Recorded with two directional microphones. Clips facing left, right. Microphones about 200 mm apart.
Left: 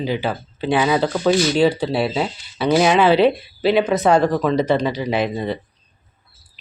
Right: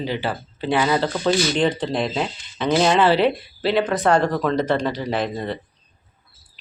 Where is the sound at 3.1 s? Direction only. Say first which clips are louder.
Left 3 dB; 20° left (ahead or behind).